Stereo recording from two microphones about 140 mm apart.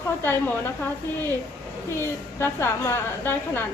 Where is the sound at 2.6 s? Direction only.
20° left (ahead or behind).